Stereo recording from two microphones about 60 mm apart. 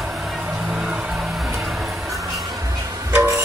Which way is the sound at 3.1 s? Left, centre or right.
Right.